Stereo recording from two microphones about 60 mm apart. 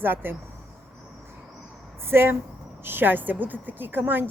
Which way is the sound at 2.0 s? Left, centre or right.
Right.